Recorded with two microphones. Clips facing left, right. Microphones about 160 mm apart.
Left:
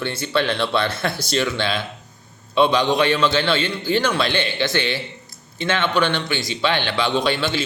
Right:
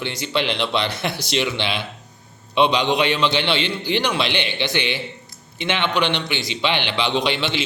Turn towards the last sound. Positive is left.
turn(degrees=-15)  # may be behind; listen again after turning